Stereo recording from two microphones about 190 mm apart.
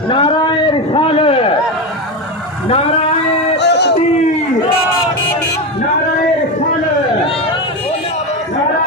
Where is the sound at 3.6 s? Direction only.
65° left (ahead or behind).